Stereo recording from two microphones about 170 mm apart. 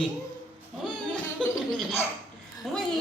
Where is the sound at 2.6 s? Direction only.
Centre (ahead or behind).